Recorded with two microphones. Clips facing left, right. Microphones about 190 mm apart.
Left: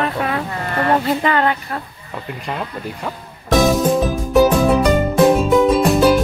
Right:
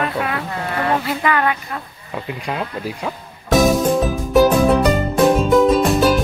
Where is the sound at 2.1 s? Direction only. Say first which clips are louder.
Right 2 dB; 5° right (ahead or behind).